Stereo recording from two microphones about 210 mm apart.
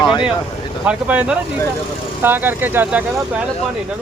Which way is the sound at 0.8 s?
5° right (ahead or behind).